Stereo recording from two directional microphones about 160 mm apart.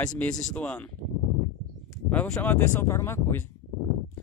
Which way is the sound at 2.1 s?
10° left (ahead or behind).